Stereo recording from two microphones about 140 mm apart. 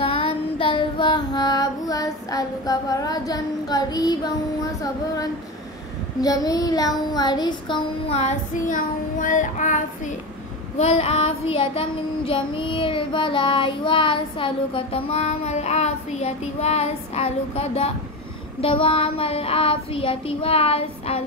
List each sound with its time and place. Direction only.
0.0 s music: 40° left (ahead or behind)
4.8 s child singing: 25° left (ahead or behind)
8.2 s child singing: 60° left (ahead or behind)
10.8 s child singing: 45° left (ahead or behind)